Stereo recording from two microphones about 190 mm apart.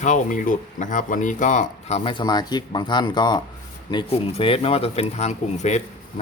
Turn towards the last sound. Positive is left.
turn(degrees=35)  # may be behind; listen again after turning